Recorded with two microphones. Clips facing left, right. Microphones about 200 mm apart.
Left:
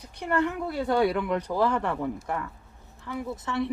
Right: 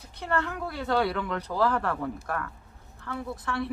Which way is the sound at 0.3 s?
15° left (ahead or behind).